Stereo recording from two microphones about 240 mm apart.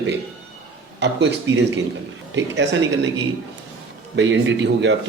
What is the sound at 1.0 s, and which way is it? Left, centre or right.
A man's voice, right.